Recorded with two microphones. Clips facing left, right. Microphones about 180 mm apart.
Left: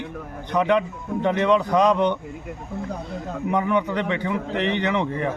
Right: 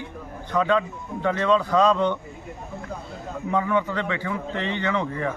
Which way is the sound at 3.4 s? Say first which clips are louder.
Left 1 dB; 15° left (ahead or behind).